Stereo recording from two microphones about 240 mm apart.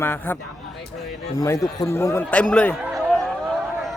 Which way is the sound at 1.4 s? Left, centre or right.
Centre.